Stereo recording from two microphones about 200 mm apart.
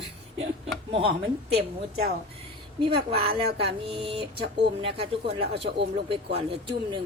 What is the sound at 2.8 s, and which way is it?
Speech, 25° right (ahead or behind).